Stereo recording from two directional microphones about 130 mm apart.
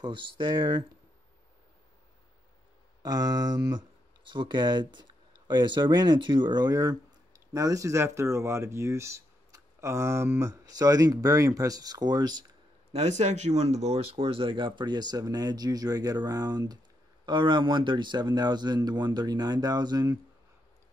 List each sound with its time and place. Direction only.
0.0 s speech: 35° right (ahead or behind)
3.0 s speech: 35° right (ahead or behind)
12.9 s speech: 60° right (ahead or behind); by 20.2 s 30° right (ahead or behind)